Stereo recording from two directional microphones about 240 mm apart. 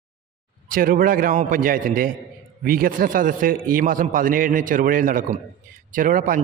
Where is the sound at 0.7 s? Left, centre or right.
Right.